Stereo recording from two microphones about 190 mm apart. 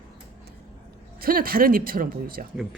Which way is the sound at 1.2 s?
50° right (ahead or behind).